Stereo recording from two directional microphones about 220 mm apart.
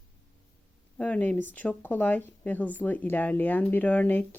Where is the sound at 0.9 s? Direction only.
5° left (ahead or behind).